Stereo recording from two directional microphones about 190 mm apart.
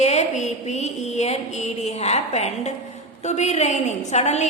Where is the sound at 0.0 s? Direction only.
35° left (ahead or behind).